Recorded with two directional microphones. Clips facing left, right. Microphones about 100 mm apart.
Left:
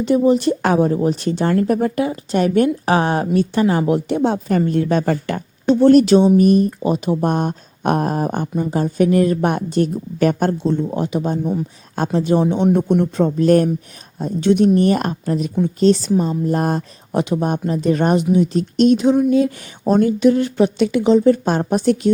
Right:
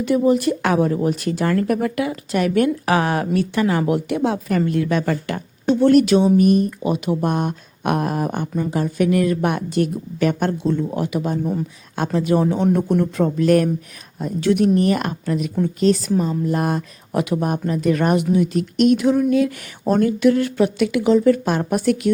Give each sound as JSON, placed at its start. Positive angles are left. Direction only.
{"t": 0.0, "sound": "speech", "side_deg": 25}
{"t": 17.1, "sound": "speech", "side_deg": 25}